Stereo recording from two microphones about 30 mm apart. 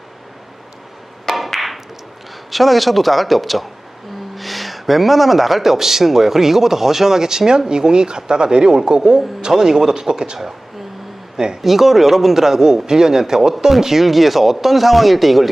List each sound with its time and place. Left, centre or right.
1.5 s a sound: centre
2.5 s speech: centre; by 10.3 s right
11.3 s speech: right
11.6 s speech: centre
13.5 s speech: centre